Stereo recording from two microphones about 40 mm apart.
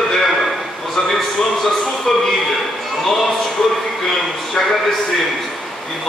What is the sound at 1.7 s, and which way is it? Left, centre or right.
Music, centre.